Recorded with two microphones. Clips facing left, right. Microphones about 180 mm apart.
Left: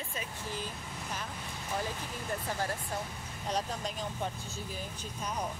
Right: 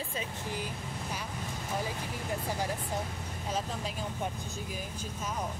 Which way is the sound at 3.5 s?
Centre (ahead or behind).